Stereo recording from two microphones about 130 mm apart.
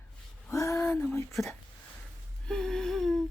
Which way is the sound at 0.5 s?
25° left (ahead or behind).